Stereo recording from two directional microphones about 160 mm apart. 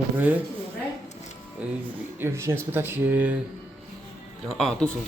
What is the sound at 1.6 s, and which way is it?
Speech, 10° right (ahead or behind).